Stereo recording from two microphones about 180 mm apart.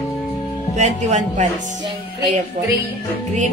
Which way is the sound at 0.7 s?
40° right (ahead or behind).